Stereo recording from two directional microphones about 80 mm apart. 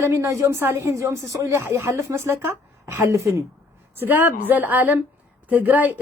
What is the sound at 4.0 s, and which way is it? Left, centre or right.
Speech, right.